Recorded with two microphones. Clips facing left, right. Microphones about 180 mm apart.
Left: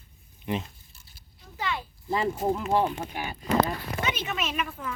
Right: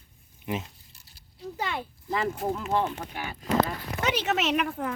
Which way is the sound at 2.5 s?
15° left (ahead or behind).